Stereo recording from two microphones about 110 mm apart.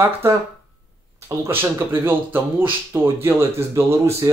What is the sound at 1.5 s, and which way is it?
Speech, 20° right (ahead or behind).